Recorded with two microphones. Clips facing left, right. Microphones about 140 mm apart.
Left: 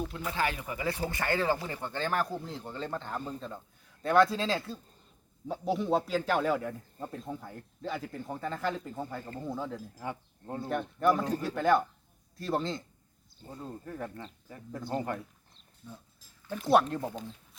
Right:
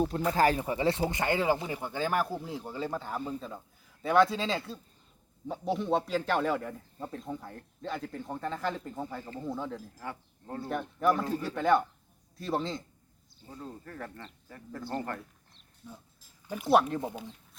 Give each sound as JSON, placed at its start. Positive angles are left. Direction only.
{"t": 0.0, "sound": "a man's voice", "side_deg": -40}
{"t": 10.0, "sound": "speech", "side_deg": 20}
{"t": 10.7, "sound": "a man's voice", "side_deg": 0}
{"t": 13.4, "sound": "speech", "side_deg": 50}
{"t": 13.8, "sound": "speech", "side_deg": 15}
{"t": 16.6, "sound": "a man's voice", "side_deg": 0}
{"t": 17.0, "sound": "speech", "side_deg": -15}